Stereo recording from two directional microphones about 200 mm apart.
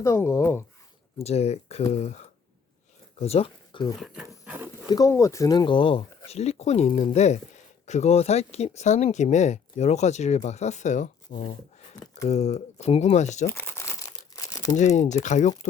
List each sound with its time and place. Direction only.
0.0 s speech: 15° left (ahead or behind)
1.2 s speech: 30° left (ahead or behind)
3.2 s speech: 30° left (ahead or behind)
4.0 s speech: 5° right (ahead or behind)
4.4 s a sound: 10° right (ahead or behind)
4.9 s speech: 15° left (ahead or behind); by 13.5 s 35° left (ahead or behind)
13.5 s crumpling: 10° left (ahead or behind)
14.7 s speech: 35° left (ahead or behind)